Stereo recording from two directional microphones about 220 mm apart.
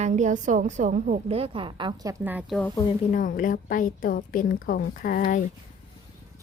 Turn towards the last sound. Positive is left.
turn(degrees=40)  # may be behind; listen again after turning